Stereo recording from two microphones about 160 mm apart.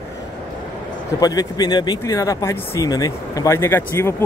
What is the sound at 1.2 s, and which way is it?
Speech, 25° left (ahead or behind).